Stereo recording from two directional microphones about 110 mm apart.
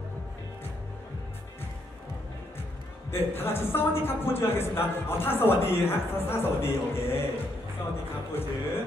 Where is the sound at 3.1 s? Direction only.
20° left (ahead or behind).